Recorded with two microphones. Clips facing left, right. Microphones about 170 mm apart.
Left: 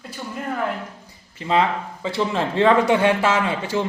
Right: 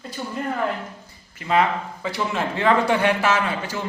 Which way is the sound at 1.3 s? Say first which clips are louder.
Even; 25° left (ahead or behind).